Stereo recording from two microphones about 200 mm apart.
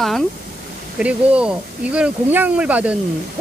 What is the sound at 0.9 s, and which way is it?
Speech, 5° right (ahead or behind).